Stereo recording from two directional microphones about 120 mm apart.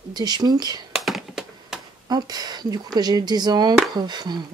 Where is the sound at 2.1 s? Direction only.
35° right (ahead or behind).